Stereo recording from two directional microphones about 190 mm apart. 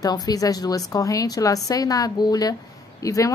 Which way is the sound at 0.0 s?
20° left (ahead or behind).